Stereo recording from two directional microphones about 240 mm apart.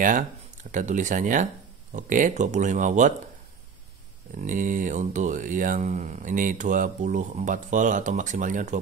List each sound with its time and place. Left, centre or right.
0.7 s speech: right
4.4 s speech: right